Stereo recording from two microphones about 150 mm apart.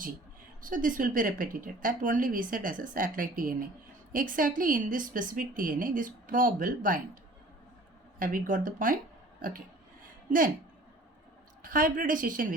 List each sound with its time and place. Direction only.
0.6 s a woman's voice: 65° right (ahead or behind)
8.2 s a woman's voice: 65° right (ahead or behind)
9.4 s a sound: 65° right (ahead or behind)
11.6 s a woman's voice: 65° right (ahead or behind)